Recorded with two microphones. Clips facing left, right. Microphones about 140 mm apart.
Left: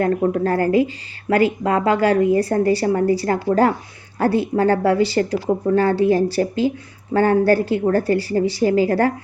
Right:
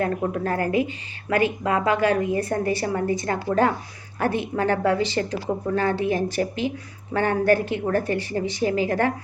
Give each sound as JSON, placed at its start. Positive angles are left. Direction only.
{"t": 0.0, "sound": "a woman's voice", "side_deg": 40}